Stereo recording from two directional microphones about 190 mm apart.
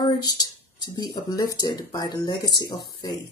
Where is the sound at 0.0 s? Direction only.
20° left (ahead or behind).